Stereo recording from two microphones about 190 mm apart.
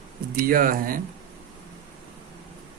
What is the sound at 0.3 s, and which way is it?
Speech, 50° right (ahead or behind).